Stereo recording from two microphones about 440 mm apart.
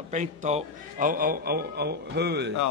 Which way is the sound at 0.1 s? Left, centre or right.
Centre.